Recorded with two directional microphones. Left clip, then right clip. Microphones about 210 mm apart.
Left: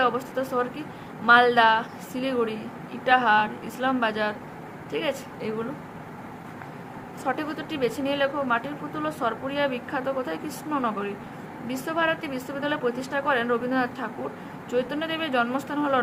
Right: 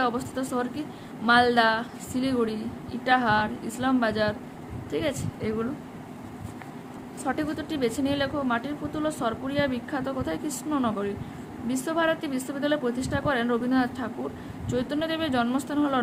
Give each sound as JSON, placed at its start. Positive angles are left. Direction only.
{"t": 0.0, "sound": "speech", "side_deg": -25}
{"t": 7.3, "sound": "speech", "side_deg": -25}